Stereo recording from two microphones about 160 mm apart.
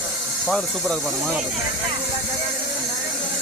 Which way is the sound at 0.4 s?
5° left (ahead or behind).